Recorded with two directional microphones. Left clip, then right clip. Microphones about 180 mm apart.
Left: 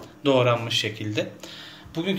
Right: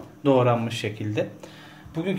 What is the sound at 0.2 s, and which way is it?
Speech, 40° right (ahead or behind).